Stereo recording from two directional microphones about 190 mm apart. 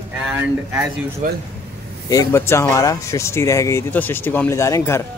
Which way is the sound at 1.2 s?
40° right (ahead or behind).